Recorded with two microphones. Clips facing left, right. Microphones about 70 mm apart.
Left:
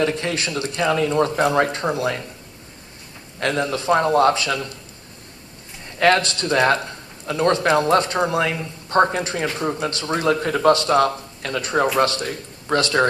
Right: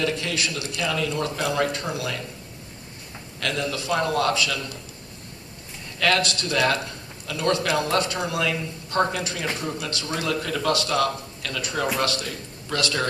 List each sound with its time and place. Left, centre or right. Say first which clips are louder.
0.0 s speech: left 4 dB; left
3.4 s speech: left 6 dB; left
6.0 s speech: left 5 dB; left